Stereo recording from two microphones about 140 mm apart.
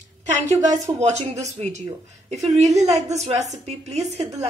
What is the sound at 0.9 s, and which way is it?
A woman's voice, 50° right (ahead or behind).